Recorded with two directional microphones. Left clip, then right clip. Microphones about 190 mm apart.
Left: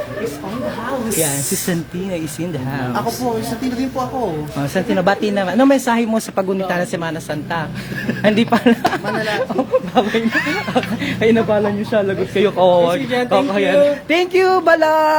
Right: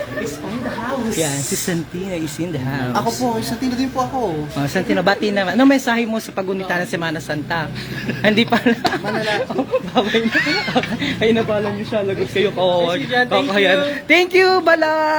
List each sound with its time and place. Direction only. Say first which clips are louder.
1.2 s a woman's voice: left 1 dB; centre (ahead or behind)
3.6 s a woman's voice: right 1 dB; 10° right (ahead or behind)
8.2 s a woman's voice: left 1 dB; 5° left (ahead or behind)
11.5 s speech: left 4 dB; 25° left (ahead or behind)
13.3 s speech: left 3 dB; centre (ahead or behind); by 15.1 s 15° left (ahead or behind)